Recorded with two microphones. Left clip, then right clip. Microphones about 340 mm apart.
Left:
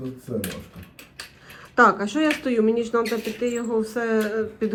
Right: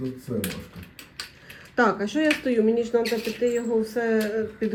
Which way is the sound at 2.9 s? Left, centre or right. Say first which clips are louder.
Even; left.